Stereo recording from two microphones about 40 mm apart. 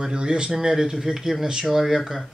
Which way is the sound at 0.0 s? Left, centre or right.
Right.